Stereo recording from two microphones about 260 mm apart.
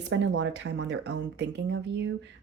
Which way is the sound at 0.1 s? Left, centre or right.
Right.